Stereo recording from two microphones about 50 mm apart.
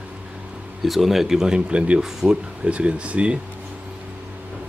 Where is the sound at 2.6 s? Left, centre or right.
Right.